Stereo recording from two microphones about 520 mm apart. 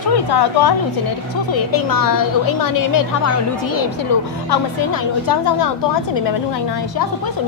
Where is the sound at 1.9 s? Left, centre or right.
Left.